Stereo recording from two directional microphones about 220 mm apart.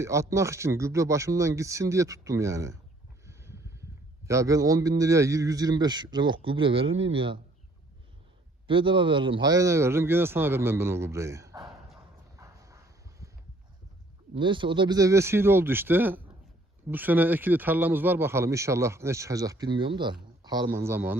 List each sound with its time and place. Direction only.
0.0 s speech: 15° right (ahead or behind)
3.2 s a sound: 10° right (ahead or behind)
4.3 s speech: 15° right (ahead or behind)
6.8 s speech: 65° right (ahead or behind)
7.1 s speech: 25° right (ahead or behind)
8.6 s speech: 25° right (ahead or behind)
12.4 s dog: 15° right (ahead or behind)
14.3 s speech: 20° right (ahead or behind)
20.7 s speech: 10° right (ahead or behind)